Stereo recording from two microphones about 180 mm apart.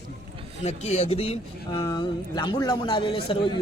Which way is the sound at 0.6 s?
35° left (ahead or behind).